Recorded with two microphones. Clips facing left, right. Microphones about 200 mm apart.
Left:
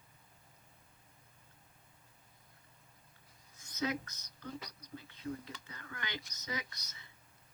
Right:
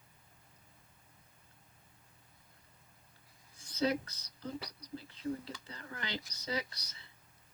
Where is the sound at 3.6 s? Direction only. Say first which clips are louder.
Right 4 dB; 30° right (ahead or behind).